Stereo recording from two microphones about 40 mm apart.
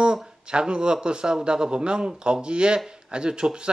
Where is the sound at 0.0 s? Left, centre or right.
Right.